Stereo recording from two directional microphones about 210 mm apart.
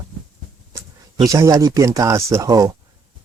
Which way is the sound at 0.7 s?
15° right (ahead or behind).